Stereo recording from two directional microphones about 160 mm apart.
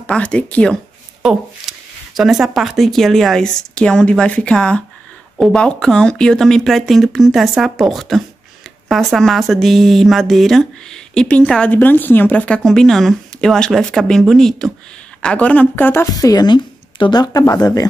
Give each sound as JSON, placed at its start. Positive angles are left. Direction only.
{"t": 0.0, "sound": "speech", "side_deg": 10}